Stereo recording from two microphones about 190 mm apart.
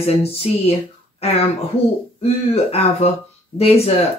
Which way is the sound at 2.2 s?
35° left (ahead or behind).